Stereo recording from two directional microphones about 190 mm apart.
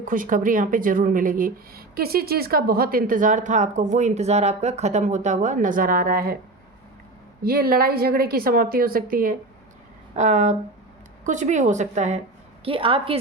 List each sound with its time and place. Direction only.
0.0 s speech: 45° right (ahead or behind)
7.4 s a woman's voice: 55° right (ahead or behind)
12.6 s a woman's voice: 25° right (ahead or behind)